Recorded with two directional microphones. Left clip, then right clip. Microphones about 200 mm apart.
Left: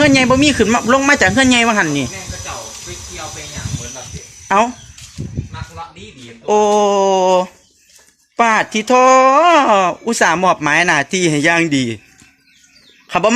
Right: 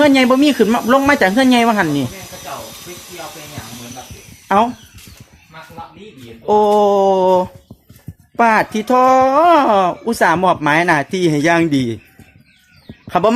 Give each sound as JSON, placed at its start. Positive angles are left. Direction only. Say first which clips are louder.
{"t": 0.0, "sound": "speech", "louder": "even", "side_deg": -10}
{"t": 4.4, "sound": "speech", "louder": "even", "side_deg": -15}
{"t": 6.4, "sound": "speech", "louder": "even", "side_deg": -15}
{"t": 13.1, "sound": "speech", "louder": "even", "side_deg": -15}